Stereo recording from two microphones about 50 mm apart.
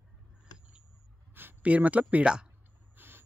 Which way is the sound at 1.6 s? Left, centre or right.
Right.